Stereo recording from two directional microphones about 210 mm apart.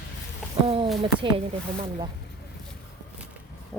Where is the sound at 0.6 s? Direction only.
25° right (ahead or behind).